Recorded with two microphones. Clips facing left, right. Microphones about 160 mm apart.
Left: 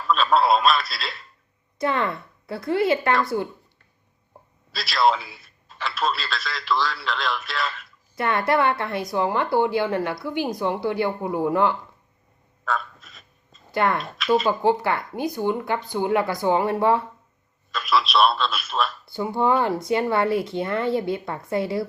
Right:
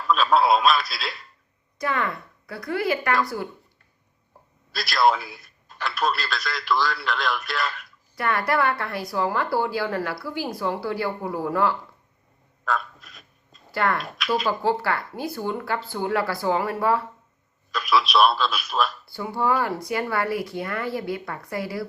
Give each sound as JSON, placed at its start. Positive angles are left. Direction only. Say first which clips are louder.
{"t": 0.1, "sound": "a man's voice", "louder": "even", "side_deg": 0}
{"t": 1.8, "sound": "a woman's voice", "louder": "left 3 dB", "side_deg": 25}
{"t": 4.7, "sound": "a man's voice", "louder": "even", "side_deg": 0}
{"t": 8.1, "sound": "a woman's voice", "louder": "left 2 dB", "side_deg": 25}
{"t": 12.6, "sound": "a sound", "louder": "even", "side_deg": 0}
{"t": 13.7, "sound": "a woman's voice", "louder": "left 2 dB", "side_deg": 20}
{"t": 17.7, "sound": "a man's voice", "louder": "right 1 dB", "side_deg": 0}
{"t": 19.0, "sound": "a woman's voice", "louder": "left 3 dB", "side_deg": 20}